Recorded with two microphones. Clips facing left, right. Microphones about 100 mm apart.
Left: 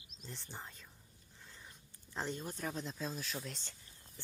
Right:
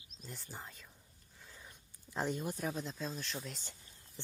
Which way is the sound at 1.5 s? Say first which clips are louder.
Right 1 dB; centre (ahead or behind).